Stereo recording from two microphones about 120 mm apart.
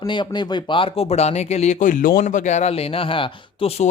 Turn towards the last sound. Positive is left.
turn(degrees=45)  # may be behind; listen again after turning